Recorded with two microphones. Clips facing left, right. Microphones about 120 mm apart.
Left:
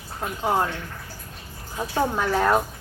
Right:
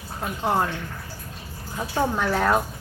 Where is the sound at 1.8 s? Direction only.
5° left (ahead or behind).